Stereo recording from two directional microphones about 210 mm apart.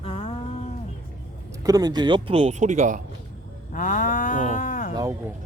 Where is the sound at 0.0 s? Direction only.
25° left (ahead or behind).